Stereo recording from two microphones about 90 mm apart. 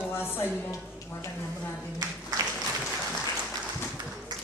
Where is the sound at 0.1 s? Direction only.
25° left (ahead or behind).